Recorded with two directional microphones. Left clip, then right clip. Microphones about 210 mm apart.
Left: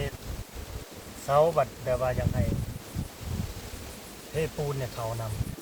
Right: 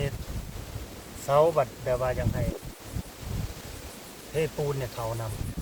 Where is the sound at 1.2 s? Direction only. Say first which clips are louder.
Right 1 dB; 55° right (ahead or behind).